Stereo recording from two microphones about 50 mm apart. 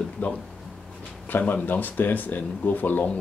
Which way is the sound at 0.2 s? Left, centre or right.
Left.